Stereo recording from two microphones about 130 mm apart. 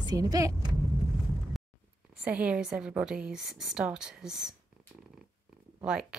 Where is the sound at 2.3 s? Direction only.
10° right (ahead or behind).